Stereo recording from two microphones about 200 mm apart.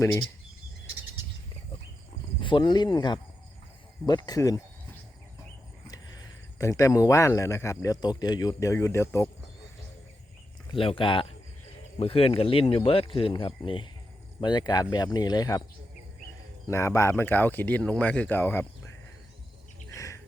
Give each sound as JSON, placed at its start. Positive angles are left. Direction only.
{"t": 2.4, "sound": "speech", "side_deg": 25}
{"t": 6.6, "sound": "speech", "side_deg": 15}
{"t": 10.7, "sound": "speech", "side_deg": 25}
{"t": 16.6, "sound": "speech", "side_deg": 15}
{"t": 19.9, "sound": "bird", "side_deg": 15}